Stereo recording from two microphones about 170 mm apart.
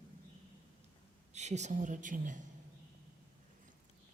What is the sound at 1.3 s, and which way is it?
A woman's voice, 40° right (ahead or behind).